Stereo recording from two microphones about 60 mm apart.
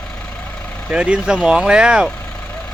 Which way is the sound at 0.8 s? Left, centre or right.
Centre.